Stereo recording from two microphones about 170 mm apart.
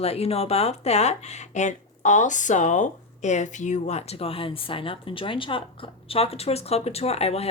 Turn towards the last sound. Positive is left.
turn(degrees=35)  # may be behind; listen again after turning